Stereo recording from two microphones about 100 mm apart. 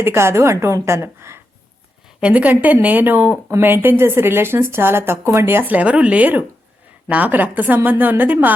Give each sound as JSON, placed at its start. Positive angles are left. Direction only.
{"t": 0.0, "sound": "speech", "side_deg": -25}
{"t": 2.2, "sound": "a woman's voice", "side_deg": -15}